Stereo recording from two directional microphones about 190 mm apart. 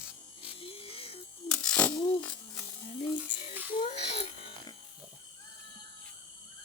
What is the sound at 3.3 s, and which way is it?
Electric shaver, 30° left (ahead or behind).